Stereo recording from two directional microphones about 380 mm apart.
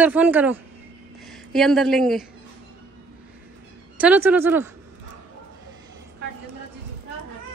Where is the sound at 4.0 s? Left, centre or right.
Centre.